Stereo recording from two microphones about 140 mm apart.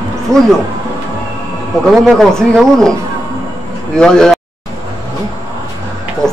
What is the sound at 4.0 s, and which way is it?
Speech, 5° left (ahead or behind).